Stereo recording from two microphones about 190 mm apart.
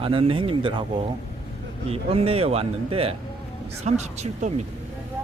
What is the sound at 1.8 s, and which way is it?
Speech, 30° right (ahead or behind).